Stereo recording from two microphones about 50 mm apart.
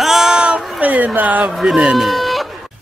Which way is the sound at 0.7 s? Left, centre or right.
Right.